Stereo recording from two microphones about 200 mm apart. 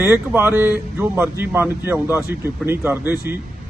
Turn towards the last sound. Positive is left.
turn(degrees=-10)  # may be behind; listen again after turning